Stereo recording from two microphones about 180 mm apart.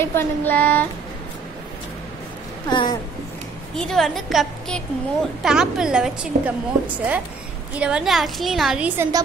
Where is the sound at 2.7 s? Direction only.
25° left (ahead or behind).